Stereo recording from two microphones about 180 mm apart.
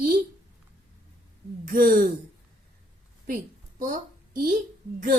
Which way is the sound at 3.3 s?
50° right (ahead or behind).